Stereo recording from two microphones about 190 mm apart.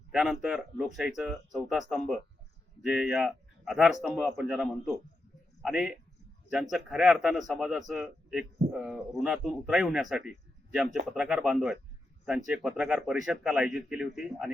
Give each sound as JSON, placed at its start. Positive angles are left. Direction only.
{"t": 0.1, "sound": "speech", "side_deg": -5}
{"t": 2.9, "sound": "speech", "side_deg": -5}